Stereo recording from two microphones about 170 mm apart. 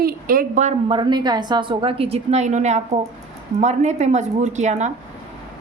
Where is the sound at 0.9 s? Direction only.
25° right (ahead or behind); by 4.9 s 45° right (ahead or behind).